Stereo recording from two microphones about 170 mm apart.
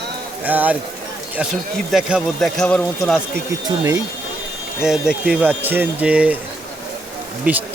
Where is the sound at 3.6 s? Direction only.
20° right (ahead or behind).